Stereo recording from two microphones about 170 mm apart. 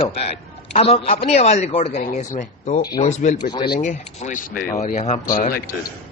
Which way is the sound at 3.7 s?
45° left (ahead or behind).